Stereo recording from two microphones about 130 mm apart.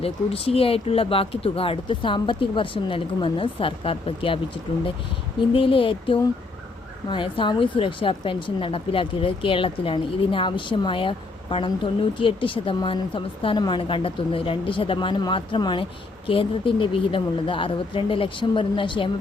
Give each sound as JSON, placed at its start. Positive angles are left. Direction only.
{"t": 0.0, "sound": "speech", "side_deg": 50}
{"t": 5.5, "sound": "speech", "side_deg": 45}